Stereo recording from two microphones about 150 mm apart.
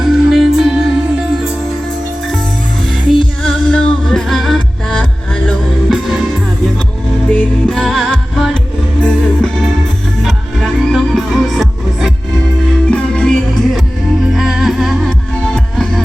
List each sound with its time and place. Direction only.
0.0 s music: centre (ahead or behind)
3.4 s music: 5° left (ahead or behind)